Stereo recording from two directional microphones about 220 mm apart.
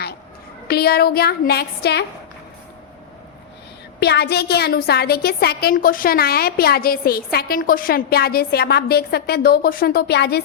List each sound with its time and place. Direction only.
0.7 s a woman's voice: 45° left (ahead or behind)
4.0 s a woman's voice: 50° left (ahead or behind)